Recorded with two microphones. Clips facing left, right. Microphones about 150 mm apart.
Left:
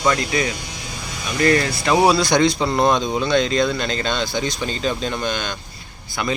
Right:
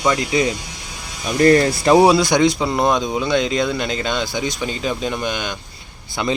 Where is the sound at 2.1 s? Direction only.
15° right (ahead or behind).